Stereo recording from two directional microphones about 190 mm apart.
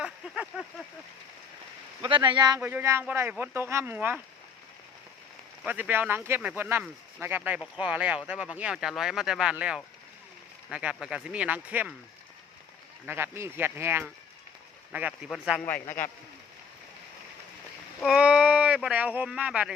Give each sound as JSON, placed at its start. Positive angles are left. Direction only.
{"t": 0.0, "sound": "a sound", "side_deg": -5}
{"t": 2.0, "sound": "speech", "side_deg": -25}
{"t": 2.6, "sound": "speech", "side_deg": -10}
{"t": 5.6, "sound": "speech", "side_deg": -10}
{"t": 13.1, "sound": "speech", "side_deg": -10}
{"t": 18.0, "sound": "speech", "side_deg": -5}